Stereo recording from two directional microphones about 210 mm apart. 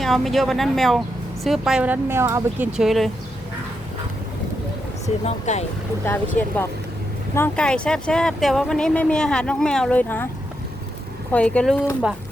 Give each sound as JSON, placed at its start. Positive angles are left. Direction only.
{"t": 0.0, "sound": "speech", "side_deg": 0}
{"t": 5.0, "sound": "speech", "side_deg": 30}
{"t": 6.4, "sound": "speech", "side_deg": 5}
{"t": 11.3, "sound": "speech", "side_deg": 5}